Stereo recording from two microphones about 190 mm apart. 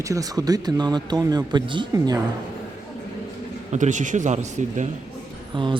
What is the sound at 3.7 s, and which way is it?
Speech, 40° right (ahead or behind).